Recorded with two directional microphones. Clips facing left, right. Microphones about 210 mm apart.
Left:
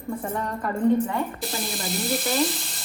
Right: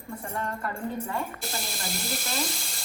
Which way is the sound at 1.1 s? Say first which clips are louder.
Left 5 dB; centre (ahead or behind).